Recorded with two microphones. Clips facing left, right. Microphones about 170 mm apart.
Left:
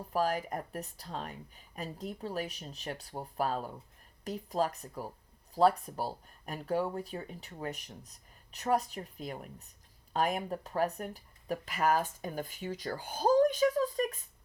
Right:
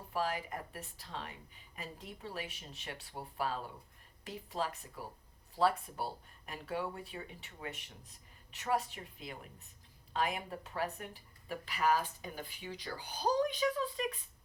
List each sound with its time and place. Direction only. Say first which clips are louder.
0.1 s speech: left 5 dB; 40° left (ahead or behind)